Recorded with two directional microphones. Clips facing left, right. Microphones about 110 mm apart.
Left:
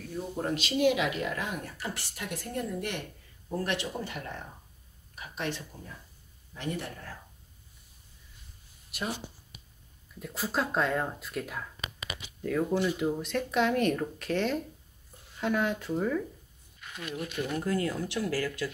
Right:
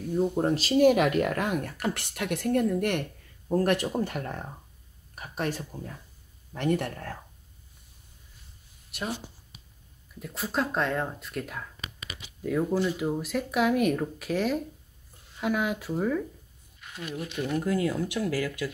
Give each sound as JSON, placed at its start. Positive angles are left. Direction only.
{"t": 0.1, "sound": "speech", "side_deg": -35}
{"t": 6.5, "sound": "speech", "side_deg": -60}
{"t": 8.9, "sound": "speech", "side_deg": 0}
{"t": 10.2, "sound": "speech", "side_deg": 0}